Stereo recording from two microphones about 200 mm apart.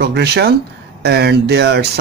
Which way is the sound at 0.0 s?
55° right (ahead or behind).